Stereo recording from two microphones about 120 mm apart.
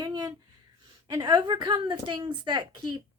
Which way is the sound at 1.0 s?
35° right (ahead or behind).